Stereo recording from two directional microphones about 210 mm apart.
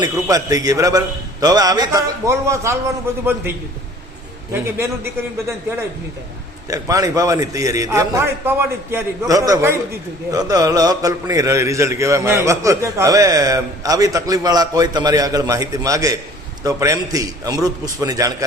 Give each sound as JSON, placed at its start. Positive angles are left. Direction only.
{"t": 0.0, "sound": "a man's voice", "side_deg": -15}
{"t": 4.5, "sound": "a man's voice", "side_deg": -10}
{"t": 6.7, "sound": "a man's voice", "side_deg": -15}